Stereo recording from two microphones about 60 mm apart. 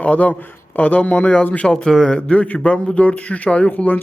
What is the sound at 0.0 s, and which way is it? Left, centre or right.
Speech, left.